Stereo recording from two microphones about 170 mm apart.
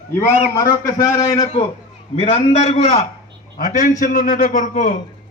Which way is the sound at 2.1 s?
40° left (ahead or behind).